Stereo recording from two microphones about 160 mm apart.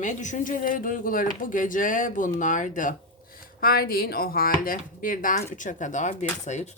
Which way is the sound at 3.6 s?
70° left (ahead or behind).